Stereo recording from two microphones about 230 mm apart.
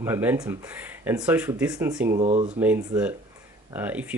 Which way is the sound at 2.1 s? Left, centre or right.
Right.